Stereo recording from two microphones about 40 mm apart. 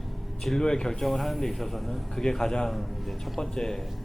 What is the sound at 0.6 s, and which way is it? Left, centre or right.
Speech, centre.